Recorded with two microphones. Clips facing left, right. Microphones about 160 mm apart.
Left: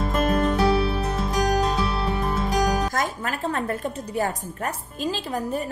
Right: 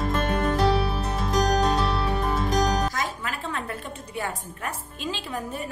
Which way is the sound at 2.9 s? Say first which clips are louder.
Left 4 dB; 45° left (ahead or behind).